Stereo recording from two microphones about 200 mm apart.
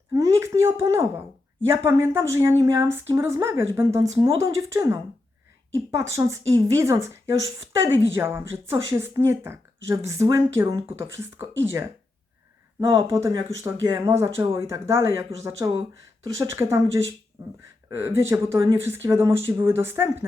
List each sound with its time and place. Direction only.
0.1 s a sound: 15° right (ahead or behind)
1.6 s speech: 15° right (ahead or behind)
12.8 s speech: 15° right (ahead or behind)